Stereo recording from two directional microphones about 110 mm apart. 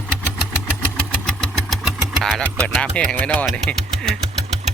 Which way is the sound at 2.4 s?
15° left (ahead or behind).